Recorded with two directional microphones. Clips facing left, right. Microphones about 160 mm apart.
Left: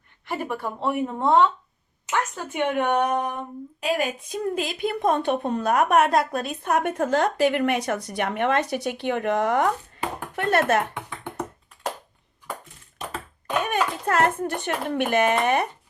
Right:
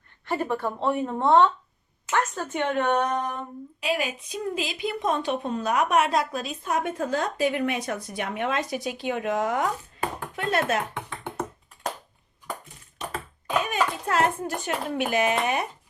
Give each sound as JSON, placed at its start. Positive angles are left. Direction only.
{"t": 0.3, "sound": "a woman's voice", "side_deg": 10}
{"t": 3.8, "sound": "a woman's voice", "side_deg": 45}
{"t": 13.7, "sound": "speech", "side_deg": 60}